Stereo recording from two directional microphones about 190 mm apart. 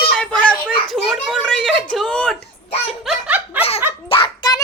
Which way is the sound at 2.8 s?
Centre (ahead or behind).